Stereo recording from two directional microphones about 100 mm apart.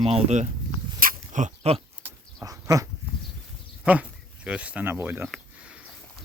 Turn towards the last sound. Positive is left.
turn(degrees=-20)  # may be behind; listen again after turning